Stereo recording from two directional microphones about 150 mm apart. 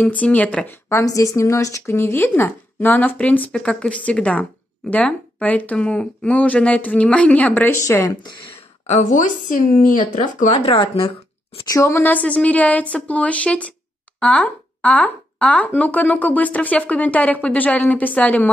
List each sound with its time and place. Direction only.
0.0 s speech: 10° left (ahead or behind)
0.8 s speech: 20° left (ahead or behind)
8.8 s speech: 55° left (ahead or behind)
10.6 s speech: 40° left (ahead or behind)
11.7 s speech: 20° left (ahead or behind)